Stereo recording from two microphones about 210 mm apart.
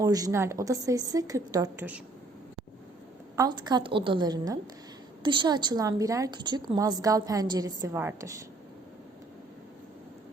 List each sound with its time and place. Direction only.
0.0 s a woman's voice: 15° right (ahead or behind)
3.3 s a woman's voice: 20° right (ahead or behind)